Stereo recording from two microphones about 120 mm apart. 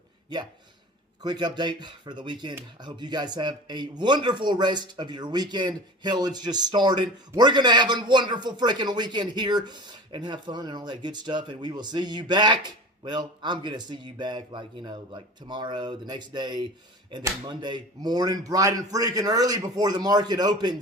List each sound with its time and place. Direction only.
1.2 s speech: 35° right (ahead or behind)